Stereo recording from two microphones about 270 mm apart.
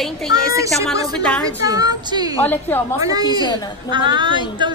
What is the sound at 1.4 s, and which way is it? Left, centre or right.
Speech, centre.